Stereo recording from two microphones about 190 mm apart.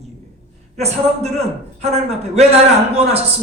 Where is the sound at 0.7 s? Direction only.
35° right (ahead or behind).